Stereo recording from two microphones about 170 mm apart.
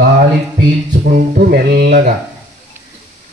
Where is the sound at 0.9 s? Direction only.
50° right (ahead or behind).